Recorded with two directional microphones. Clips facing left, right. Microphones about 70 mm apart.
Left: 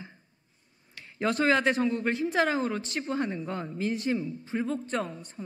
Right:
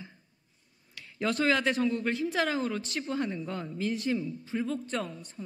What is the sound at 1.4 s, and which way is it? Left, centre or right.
Speech, left.